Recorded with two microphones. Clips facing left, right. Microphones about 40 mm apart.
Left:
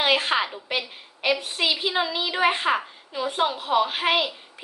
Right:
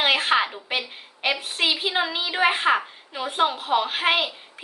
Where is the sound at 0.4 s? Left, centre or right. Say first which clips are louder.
Right 1 dB; centre.